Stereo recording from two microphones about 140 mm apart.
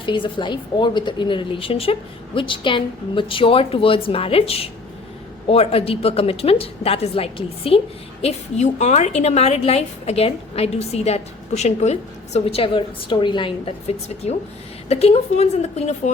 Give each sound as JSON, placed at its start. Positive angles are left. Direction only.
{"t": 0.0, "sound": "a woman's voice", "side_deg": 35}
{"t": 8.2, "sound": "a woman's voice", "side_deg": 55}